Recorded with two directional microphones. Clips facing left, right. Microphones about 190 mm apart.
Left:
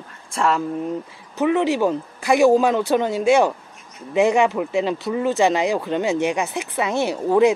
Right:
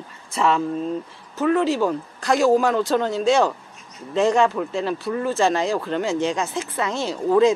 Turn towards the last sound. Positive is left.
turn(degrees=15)  # may be behind; listen again after turning